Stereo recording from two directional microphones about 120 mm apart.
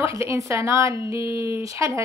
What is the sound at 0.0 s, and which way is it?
Speech, 25° right (ahead or behind).